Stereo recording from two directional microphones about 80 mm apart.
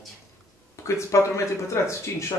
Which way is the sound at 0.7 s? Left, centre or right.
Left.